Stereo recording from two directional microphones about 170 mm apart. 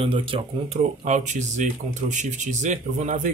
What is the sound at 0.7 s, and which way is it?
Speech, 45° right (ahead or behind).